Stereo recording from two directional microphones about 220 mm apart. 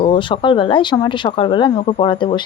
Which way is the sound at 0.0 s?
25° left (ahead or behind).